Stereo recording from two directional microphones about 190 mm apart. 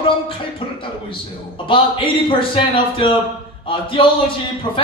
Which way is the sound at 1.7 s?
25° left (ahead or behind).